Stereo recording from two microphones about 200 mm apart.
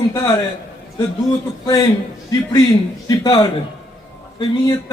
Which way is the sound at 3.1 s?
20° left (ahead or behind).